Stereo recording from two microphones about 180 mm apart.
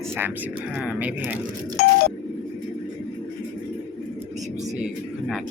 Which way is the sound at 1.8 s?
55° left (ahead or behind).